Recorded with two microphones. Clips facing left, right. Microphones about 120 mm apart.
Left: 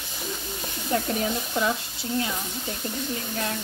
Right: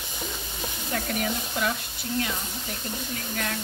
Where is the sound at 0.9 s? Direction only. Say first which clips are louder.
Left 4 dB; 25° left (ahead or behind).